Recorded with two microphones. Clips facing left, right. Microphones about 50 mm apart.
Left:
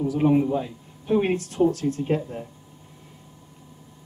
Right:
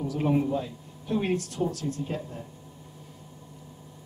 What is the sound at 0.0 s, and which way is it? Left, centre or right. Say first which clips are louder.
Speech: left 6 dB; centre.